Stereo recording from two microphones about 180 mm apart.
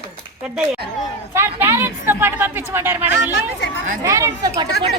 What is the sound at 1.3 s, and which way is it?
A woman's voice, 15° right (ahead or behind).